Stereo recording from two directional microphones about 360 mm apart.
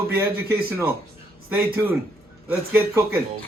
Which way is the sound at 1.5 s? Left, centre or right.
Centre.